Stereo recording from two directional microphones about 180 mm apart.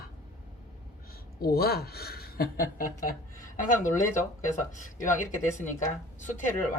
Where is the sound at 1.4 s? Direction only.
60° left (ahead or behind).